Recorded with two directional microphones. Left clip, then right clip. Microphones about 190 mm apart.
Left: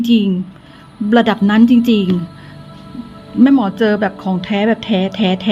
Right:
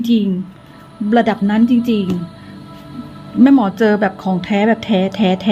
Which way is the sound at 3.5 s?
5° right (ahead or behind).